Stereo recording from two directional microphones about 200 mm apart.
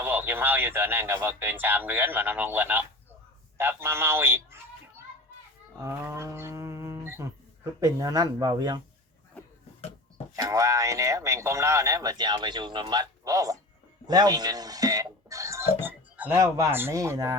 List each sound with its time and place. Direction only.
0.0 s speech: 10° right (ahead or behind)
3.6 s a sound: 10° right (ahead or behind)
10.3 s speech: 15° right (ahead or behind)